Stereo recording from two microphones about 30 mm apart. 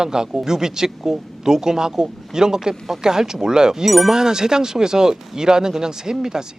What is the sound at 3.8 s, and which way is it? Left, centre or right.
Speech, centre.